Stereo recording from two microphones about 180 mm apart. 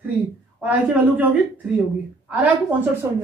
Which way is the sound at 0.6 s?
10° right (ahead or behind).